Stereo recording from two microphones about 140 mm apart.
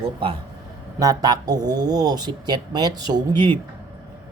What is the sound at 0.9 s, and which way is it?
Speech, 25° right (ahead or behind).